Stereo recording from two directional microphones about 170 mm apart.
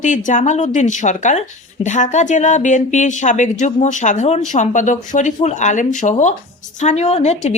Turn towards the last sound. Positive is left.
turn(degrees=40)  # may be behind; listen again after turning